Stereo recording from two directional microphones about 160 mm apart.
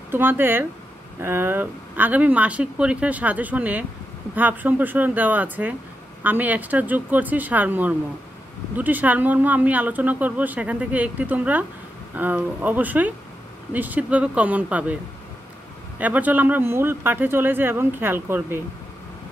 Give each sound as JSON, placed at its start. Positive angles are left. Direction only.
{"t": 0.1, "sound": "speech", "side_deg": -15}
{"t": 16.0, "sound": "speech", "side_deg": -10}